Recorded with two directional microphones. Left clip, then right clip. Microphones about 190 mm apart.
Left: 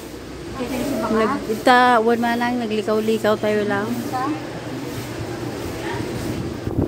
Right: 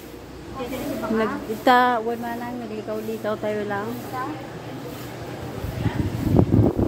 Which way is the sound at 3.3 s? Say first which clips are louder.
Left 3 dB; 5° left (ahead or behind).